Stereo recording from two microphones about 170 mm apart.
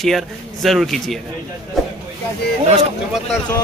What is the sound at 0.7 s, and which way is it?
Speech, centre (ahead or behind).